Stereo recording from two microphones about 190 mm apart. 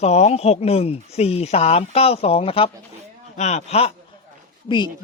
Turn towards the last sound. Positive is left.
turn(degrees=25)  # may be behind; listen again after turning